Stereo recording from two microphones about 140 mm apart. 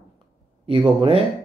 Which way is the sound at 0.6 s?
40° right (ahead or behind).